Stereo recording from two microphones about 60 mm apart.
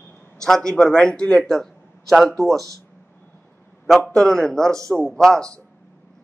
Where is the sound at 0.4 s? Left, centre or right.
Centre.